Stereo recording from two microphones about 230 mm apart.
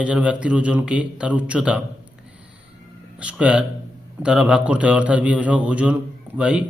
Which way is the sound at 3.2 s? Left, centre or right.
Centre.